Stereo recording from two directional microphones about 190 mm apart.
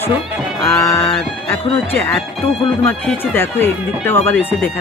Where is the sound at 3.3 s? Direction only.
10° left (ahead or behind).